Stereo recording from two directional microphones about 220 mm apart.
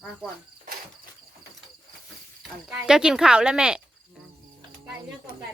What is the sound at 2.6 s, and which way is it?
A woman's voice, 5° right (ahead or behind).